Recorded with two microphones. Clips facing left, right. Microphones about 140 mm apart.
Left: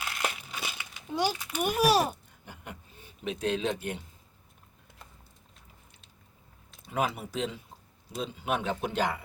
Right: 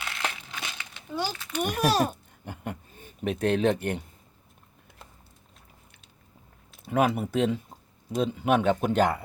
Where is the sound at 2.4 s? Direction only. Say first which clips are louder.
Right 8 dB; 50° right (ahead or behind).